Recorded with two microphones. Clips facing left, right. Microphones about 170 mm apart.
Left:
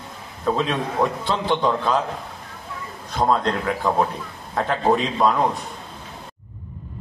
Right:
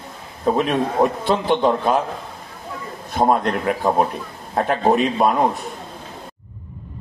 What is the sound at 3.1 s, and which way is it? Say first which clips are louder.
A man's voice: right 2 dB; 20° right (ahead or behind).